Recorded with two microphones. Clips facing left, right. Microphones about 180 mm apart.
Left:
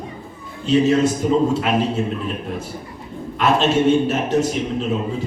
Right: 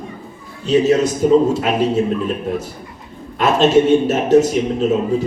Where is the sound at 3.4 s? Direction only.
40° right (ahead or behind).